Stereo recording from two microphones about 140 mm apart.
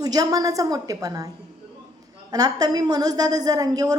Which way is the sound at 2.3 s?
25° right (ahead or behind).